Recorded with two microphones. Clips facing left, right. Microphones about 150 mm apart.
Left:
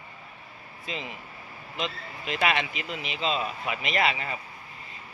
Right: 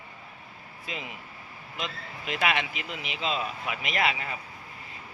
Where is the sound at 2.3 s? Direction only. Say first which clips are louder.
Left 1 dB; 5° right (ahead or behind).